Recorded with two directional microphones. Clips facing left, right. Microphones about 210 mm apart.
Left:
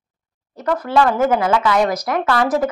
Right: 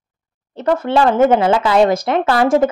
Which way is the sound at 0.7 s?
25° right (ahead or behind).